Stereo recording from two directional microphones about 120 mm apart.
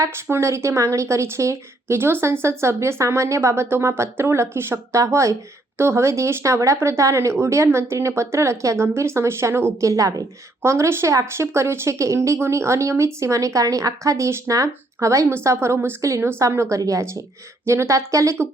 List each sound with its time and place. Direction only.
0.0 s speech: 20° right (ahead or behind)